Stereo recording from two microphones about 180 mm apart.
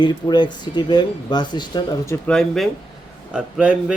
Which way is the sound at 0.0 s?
25° left (ahead or behind).